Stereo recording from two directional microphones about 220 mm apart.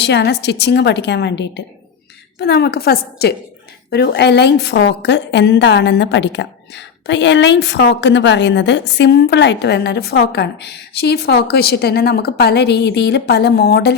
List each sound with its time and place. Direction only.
0.0 s a woman's voice: 50° left (ahead or behind)